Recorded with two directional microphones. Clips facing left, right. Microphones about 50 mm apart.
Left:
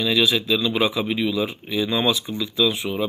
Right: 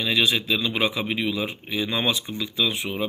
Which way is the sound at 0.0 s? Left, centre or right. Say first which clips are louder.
Left 2 dB; centre.